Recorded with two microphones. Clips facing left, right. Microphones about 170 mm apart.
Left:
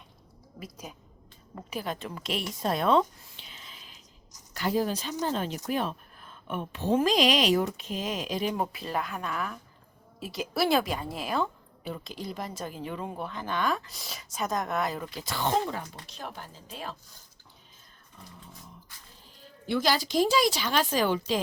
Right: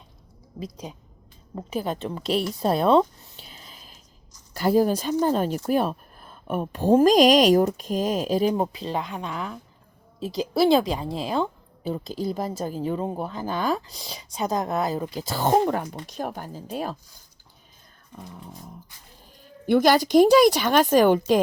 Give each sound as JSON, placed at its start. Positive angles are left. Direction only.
{"t": 1.5, "sound": "speech", "side_deg": -30}
{"t": 8.8, "sound": "a woman's voice", "side_deg": -25}
{"t": 18.2, "sound": "a sound", "side_deg": -60}
{"t": 19.4, "sound": "speech", "side_deg": -50}